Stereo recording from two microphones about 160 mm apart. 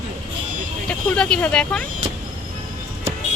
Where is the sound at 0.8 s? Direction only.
5° left (ahead or behind).